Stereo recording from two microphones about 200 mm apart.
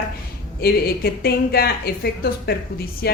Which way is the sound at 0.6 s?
50° left (ahead or behind).